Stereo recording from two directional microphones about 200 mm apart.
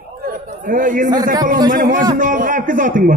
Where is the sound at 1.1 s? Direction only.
20° right (ahead or behind).